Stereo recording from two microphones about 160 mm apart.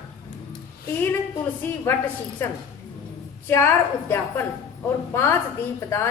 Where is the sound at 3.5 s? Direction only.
15° left (ahead or behind).